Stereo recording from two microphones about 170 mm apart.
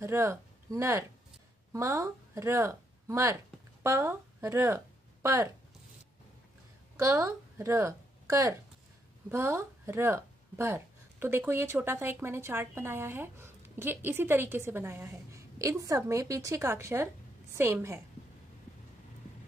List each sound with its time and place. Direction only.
0.0 s speech: 15° right (ahead or behind)
7.0 s speech: 15° right (ahead or behind)